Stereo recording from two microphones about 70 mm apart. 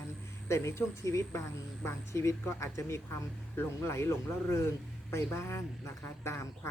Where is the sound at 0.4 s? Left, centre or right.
Left.